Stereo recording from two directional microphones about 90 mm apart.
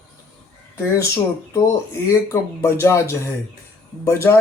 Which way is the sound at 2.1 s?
30° left (ahead or behind).